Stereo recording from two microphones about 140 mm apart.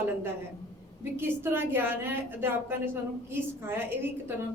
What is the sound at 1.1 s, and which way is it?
A woman's voice, 15° right (ahead or behind).